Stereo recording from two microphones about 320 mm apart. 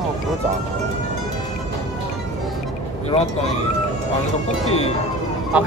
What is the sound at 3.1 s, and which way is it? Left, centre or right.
Speech, centre.